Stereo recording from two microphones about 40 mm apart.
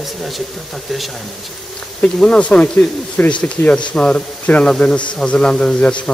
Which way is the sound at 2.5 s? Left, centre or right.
Left.